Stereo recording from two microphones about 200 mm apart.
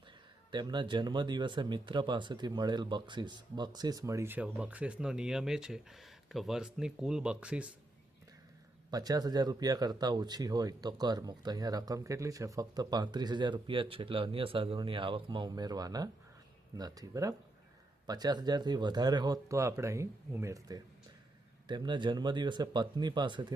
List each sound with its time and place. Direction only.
0.5 s speech: 20° right (ahead or behind); by 7.7 s 5° right (ahead or behind)
8.9 s speech: 20° right (ahead or behind)